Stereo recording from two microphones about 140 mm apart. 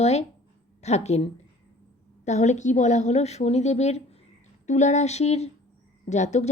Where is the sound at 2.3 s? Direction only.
55° left (ahead or behind).